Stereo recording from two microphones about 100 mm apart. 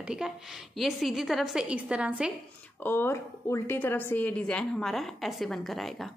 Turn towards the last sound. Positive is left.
turn(degrees=0)  # may be behind; listen again after turning